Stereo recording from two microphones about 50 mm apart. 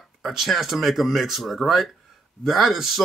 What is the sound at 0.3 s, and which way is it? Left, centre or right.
Speech, centre.